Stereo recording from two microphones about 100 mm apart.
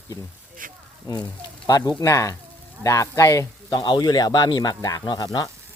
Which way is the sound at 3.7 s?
45° left (ahead or behind).